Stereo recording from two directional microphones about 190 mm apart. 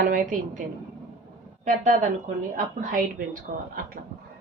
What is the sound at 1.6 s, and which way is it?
A woman's voice, 40° right (ahead or behind).